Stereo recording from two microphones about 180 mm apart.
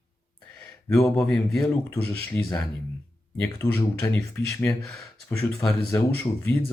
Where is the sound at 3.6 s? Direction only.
10° left (ahead or behind).